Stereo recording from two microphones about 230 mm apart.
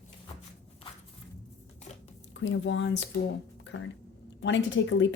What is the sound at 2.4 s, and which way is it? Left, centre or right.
Speech, left.